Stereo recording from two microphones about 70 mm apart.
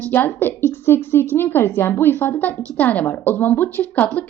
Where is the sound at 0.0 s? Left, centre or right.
Left.